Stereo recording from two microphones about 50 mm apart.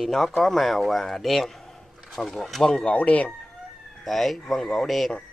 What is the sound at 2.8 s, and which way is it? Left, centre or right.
Speech, left.